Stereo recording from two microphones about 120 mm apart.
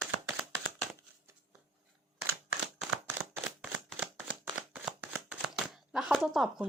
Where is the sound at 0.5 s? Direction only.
20° right (ahead or behind).